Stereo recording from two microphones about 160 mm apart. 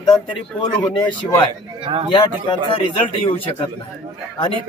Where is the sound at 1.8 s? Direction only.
30° right (ahead or behind).